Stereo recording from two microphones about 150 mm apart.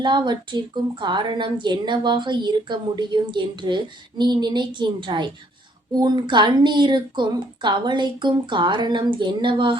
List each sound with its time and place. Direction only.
0.0 s a woman's voice: 30° right (ahead or behind)